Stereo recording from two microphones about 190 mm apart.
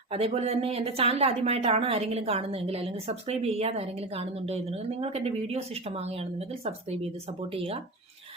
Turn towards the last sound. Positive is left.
turn(degrees=-30)  # may be behind; listen again after turning